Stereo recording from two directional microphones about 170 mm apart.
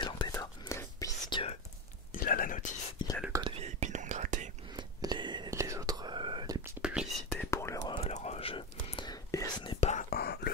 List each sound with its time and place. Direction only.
0.0 s whispering: 20° left (ahead or behind)
2.1 s whispering: 55° left (ahead or behind)
3.3 s whispering: 35° right (ahead or behind)
4.7 s whispering: 25° right (ahead or behind)
6.8 s whispering: 5° right (ahead or behind)
7.2 s whispering: 15° left (ahead or behind)
7.9 s whispering: 40° left (ahead or behind)
9.8 s whispering: 40° left (ahead or behind)
10.0 s whispering: 65° left (ahead or behind)